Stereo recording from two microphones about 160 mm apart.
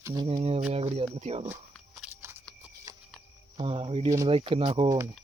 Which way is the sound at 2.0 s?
10° right (ahead or behind).